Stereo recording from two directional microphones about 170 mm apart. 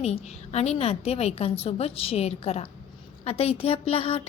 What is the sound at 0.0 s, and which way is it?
A woman's voice, 40° left (ahead or behind).